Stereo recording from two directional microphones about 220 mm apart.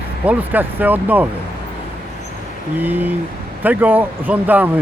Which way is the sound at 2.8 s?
10° right (ahead or behind).